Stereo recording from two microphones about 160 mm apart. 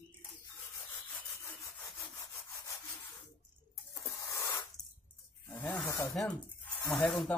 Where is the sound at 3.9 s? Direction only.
20° left (ahead or behind).